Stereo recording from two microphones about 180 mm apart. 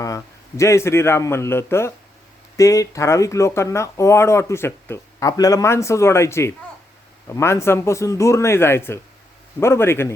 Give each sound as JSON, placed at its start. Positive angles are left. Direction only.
{"t": 0.0, "sound": "a man's voice", "side_deg": 15}